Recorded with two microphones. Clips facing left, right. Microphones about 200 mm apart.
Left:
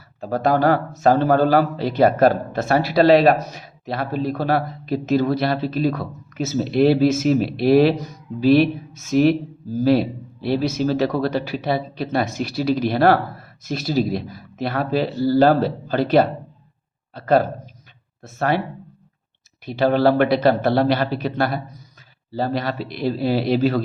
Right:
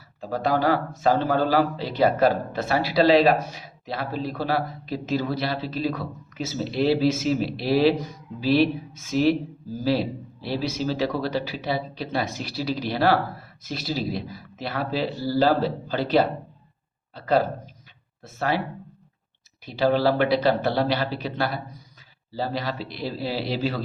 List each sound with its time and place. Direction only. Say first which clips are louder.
0.2 s speech: left 5 dB; 50° left (ahead or behind)
19.6 s speech: left 4 dB; 50° left (ahead or behind)